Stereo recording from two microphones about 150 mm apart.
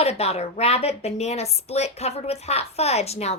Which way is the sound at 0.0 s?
45° left (ahead or behind).